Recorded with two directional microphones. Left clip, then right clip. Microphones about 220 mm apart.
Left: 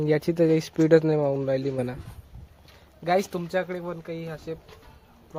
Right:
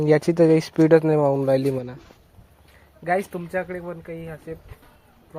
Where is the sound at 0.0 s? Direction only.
5° right (ahead or behind).